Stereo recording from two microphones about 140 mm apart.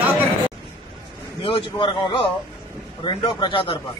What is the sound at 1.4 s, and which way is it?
A man's voice, 40° left (ahead or behind).